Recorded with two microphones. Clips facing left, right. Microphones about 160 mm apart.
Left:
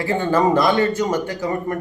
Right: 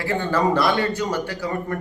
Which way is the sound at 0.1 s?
20° left (ahead or behind).